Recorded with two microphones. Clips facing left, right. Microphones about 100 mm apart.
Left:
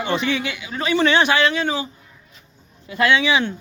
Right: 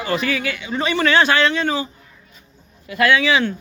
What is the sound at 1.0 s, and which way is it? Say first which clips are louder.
Speech: even; 15° left (ahead or behind).